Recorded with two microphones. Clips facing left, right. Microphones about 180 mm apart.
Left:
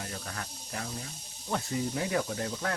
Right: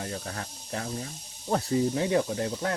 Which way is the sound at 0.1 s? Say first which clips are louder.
Right 4 dB; 35° right (ahead or behind).